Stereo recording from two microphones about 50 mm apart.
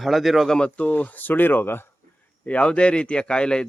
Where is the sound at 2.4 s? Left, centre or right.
Left.